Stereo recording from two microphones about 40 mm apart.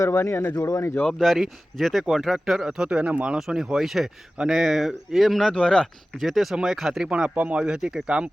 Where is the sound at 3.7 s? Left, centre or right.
Centre.